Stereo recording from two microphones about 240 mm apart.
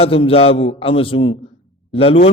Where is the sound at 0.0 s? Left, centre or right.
Left.